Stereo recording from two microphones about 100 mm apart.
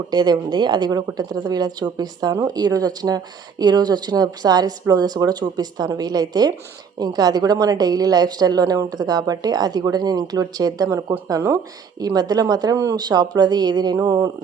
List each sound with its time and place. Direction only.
0.1 s speech: 45° right (ahead or behind)
2.3 s speech: 30° right (ahead or behind)
2.6 s a woman's voice: 40° right (ahead or behind)